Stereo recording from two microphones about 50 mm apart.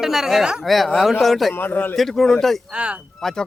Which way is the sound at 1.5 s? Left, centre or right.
Left.